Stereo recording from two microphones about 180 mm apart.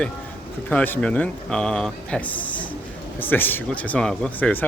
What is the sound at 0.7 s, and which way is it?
Speech, 5° left (ahead or behind).